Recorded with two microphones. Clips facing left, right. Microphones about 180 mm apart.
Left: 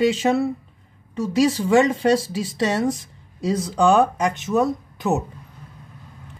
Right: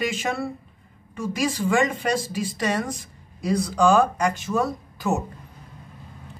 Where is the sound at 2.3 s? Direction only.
25° left (ahead or behind).